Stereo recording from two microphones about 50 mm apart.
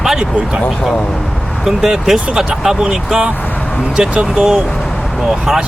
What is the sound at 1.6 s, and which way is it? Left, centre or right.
Speech, centre.